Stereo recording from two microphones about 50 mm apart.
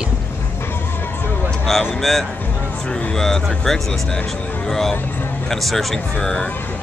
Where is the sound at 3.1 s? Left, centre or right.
Centre.